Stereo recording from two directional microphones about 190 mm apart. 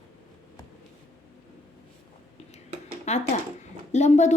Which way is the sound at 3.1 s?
35° left (ahead or behind).